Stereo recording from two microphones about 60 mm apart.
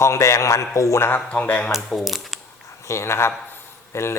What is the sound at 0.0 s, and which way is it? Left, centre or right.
A man's voice, left.